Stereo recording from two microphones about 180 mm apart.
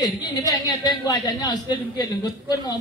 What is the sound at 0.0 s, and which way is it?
Speech, 20° left (ahead or behind).